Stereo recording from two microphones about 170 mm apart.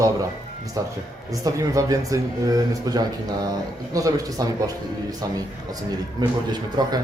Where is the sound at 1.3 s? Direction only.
20° right (ahead or behind).